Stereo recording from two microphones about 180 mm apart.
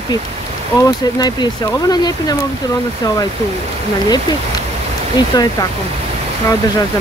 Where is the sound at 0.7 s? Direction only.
25° left (ahead or behind).